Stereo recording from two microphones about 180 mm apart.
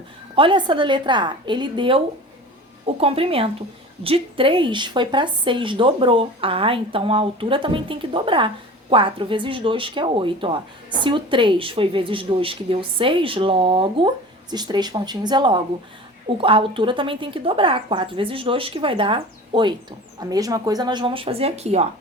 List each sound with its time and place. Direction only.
0.3 s a woman's voice: 30° right (ahead or behind)